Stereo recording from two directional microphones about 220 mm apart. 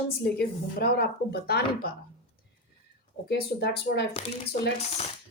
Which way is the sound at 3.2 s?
45° left (ahead or behind).